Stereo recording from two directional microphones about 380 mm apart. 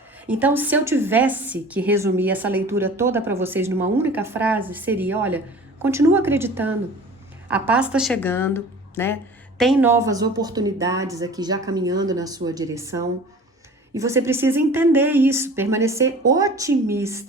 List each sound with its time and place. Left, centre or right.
0.3 s a woman's voice: centre